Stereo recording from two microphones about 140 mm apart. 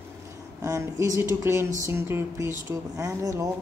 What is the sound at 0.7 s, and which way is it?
Speech, 20° right (ahead or behind).